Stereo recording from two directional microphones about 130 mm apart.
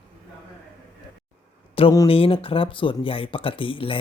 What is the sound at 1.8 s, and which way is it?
Speech, 45° left (ahead or behind).